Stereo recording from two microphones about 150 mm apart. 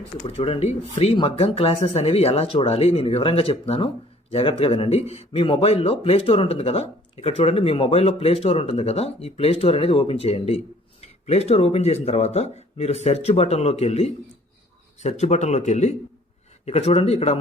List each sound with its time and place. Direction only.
0.3 s speech: 40° left (ahead or behind)